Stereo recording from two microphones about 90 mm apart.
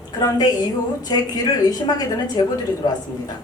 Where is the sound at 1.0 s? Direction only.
45° left (ahead or behind).